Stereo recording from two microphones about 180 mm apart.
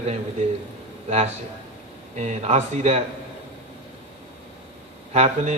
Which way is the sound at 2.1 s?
40° right (ahead or behind).